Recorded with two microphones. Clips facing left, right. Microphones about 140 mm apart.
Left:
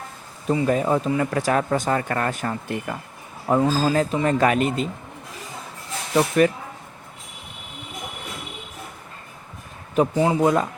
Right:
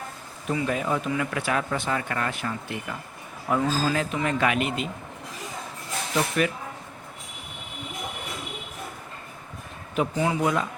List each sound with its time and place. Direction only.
0.4 s speech: 35° left (ahead or behind)
3.5 s speech: 35° left (ahead or behind)
6.1 s speech: 40° left (ahead or behind)
9.9 s speech: 35° left (ahead or behind)